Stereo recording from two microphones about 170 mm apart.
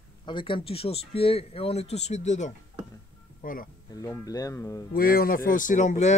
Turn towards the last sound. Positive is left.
turn(degrees=45)  # may be behind; listen again after turning